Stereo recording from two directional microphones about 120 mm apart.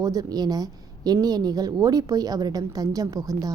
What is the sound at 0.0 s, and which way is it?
A woman's voice, 30° right (ahead or behind).